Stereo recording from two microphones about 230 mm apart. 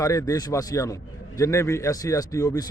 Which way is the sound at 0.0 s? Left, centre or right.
Centre.